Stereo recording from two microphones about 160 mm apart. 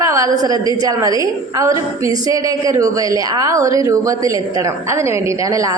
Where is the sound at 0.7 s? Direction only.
25° right (ahead or behind).